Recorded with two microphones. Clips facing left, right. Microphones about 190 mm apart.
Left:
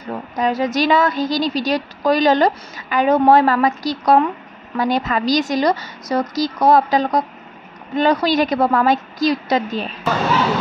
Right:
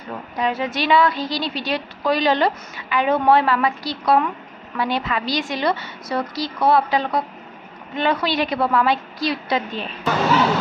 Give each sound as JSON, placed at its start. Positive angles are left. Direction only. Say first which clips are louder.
{"t": 0.4, "sound": "a woman's voice", "louder": "left 5 dB", "side_deg": 40}